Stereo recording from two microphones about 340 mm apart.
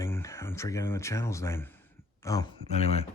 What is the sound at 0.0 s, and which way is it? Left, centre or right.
Speech, centre.